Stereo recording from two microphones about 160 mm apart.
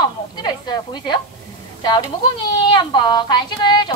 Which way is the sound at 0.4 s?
25° left (ahead or behind).